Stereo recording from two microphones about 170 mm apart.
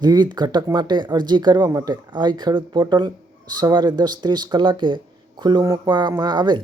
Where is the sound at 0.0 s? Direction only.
25° right (ahead or behind).